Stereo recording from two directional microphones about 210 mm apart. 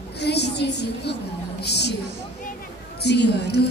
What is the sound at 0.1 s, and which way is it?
A woman's voice, 55° left (ahead or behind).